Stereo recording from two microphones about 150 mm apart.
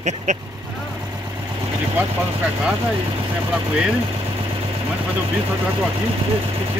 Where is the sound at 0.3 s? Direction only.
50° right (ahead or behind).